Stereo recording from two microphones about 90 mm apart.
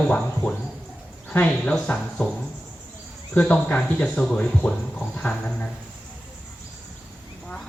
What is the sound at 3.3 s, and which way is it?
Speech, 15° left (ahead or behind).